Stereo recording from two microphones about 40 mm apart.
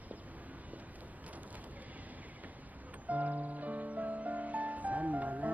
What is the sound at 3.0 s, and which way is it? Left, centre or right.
Music, right.